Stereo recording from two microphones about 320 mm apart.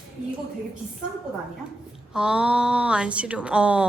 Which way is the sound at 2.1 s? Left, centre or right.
Centre.